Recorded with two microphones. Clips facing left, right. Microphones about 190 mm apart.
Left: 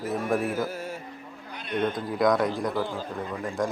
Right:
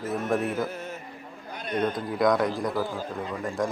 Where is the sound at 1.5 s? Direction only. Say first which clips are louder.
Right 5 dB; 45° right (ahead or behind).